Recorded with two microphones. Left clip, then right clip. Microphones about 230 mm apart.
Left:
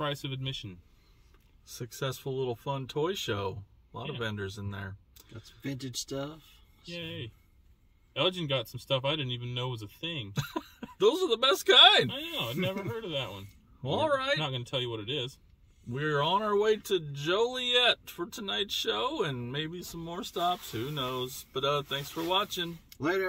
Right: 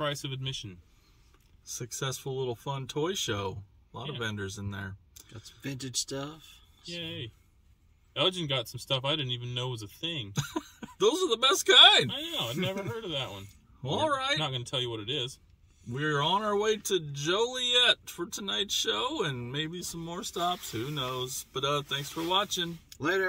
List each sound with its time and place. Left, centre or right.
0.0 s speech: centre
1.7 s speech: centre
5.6 s speech: centre
10.3 s speech: centre
12.1 s speech: centre
13.8 s speech: centre
14.4 s speech: centre
15.9 s speech: right
22.8 s a sound: centre